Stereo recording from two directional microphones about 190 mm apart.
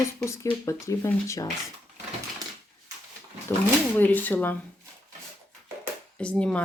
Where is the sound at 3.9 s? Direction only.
10° left (ahead or behind).